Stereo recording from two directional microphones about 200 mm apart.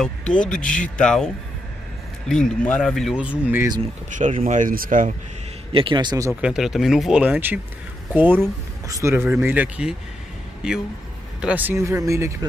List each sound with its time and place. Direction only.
0.0 s speech: 5° left (ahead or behind)
4.1 s speech: 40° right (ahead or behind)
5.7 s a man's voice: 25° right (ahead or behind)
6.4 s speech: 5° right (ahead or behind)